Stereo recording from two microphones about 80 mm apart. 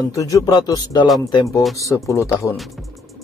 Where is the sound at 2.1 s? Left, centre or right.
Left.